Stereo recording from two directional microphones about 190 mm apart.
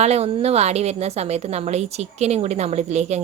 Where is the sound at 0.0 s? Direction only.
35° right (ahead or behind).